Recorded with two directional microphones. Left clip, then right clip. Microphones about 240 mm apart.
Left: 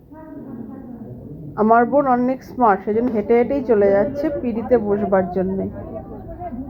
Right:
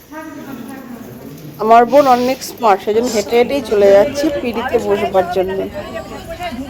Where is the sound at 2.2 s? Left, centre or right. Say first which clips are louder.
Right 3 dB; centre.